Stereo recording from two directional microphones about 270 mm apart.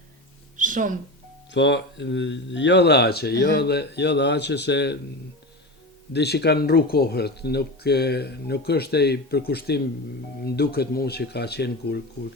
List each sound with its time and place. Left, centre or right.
0.5 s a sound: right
1.5 s speech: left
6.1 s speech: left